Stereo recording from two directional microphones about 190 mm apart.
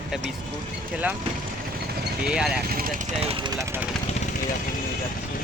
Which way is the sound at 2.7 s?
50° right (ahead or behind).